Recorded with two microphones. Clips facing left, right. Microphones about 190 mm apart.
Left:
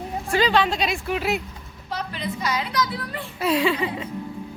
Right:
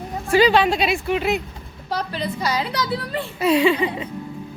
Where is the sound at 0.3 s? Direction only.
10° right (ahead or behind).